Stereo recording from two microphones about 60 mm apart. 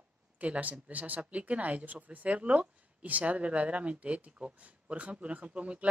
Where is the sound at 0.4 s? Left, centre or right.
Right.